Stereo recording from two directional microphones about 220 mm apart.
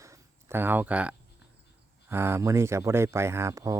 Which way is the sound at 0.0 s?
10° right (ahead or behind).